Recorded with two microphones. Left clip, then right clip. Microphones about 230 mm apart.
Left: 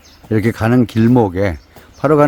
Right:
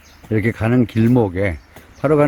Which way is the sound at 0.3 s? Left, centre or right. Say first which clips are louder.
Left 3 dB; centre.